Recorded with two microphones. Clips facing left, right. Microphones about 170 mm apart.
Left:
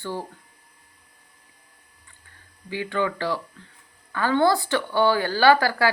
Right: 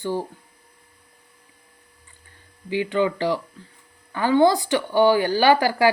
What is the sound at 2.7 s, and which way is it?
A woman's voice, 15° right (ahead or behind).